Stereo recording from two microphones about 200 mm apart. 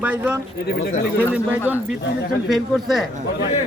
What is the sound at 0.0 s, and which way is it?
Speech, 5° right (ahead or behind).